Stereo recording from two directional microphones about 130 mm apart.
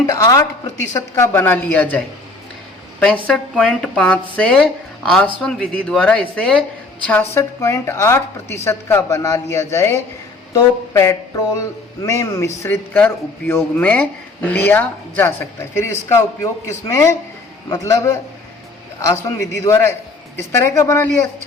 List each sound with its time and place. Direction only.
0.1 s a woman's voice: 25° left (ahead or behind)